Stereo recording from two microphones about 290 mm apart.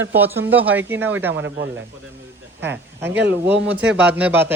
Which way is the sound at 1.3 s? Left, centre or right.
Right.